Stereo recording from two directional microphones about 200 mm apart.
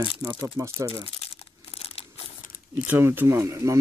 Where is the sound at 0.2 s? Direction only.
15° right (ahead or behind).